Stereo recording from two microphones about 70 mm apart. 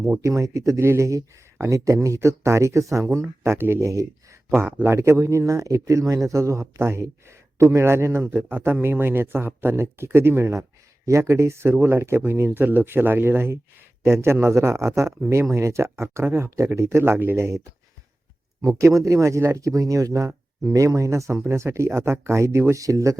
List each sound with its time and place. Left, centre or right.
0.2 s speech: right
4.5 s speech: right
18.6 s speech: right